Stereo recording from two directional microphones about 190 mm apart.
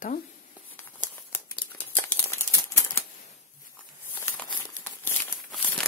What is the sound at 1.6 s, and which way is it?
Crumpling, 10° left (ahead or behind).